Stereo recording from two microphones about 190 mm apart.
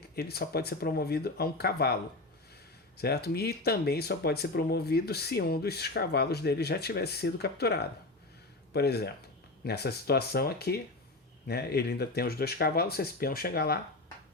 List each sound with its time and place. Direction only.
0.2 s speech: 55° left (ahead or behind)
3.0 s speech: 55° left (ahead or behind)